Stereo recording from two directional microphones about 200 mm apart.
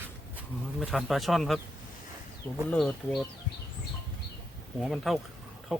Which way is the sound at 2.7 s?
Centre (ahead or behind).